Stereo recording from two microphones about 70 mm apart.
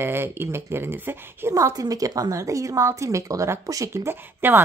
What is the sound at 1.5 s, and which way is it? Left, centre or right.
A woman's voice, right.